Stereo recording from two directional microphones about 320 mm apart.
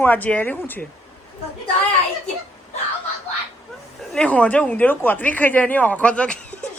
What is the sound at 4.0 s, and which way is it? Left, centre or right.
Speech, centre.